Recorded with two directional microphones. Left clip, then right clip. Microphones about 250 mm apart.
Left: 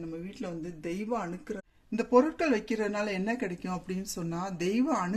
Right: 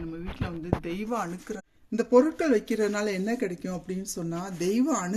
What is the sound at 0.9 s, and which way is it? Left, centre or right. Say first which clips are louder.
Speech: right 2 dB; centre.